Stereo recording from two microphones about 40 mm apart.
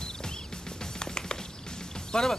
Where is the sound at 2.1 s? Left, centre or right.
Centre.